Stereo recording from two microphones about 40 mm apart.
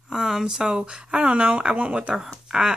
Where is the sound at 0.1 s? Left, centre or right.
Centre.